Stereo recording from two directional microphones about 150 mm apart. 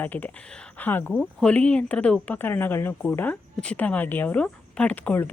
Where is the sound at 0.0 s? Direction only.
10° left (ahead or behind).